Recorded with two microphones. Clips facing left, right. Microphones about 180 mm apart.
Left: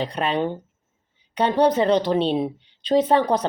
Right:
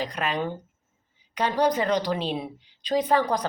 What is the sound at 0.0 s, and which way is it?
Speech, 30° left (ahead or behind).